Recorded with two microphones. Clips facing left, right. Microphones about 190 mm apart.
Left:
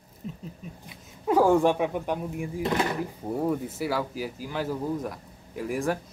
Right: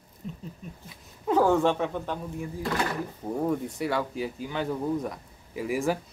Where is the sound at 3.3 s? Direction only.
5° left (ahead or behind).